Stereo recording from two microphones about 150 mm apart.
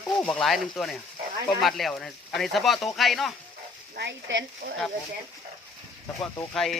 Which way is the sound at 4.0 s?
90° right.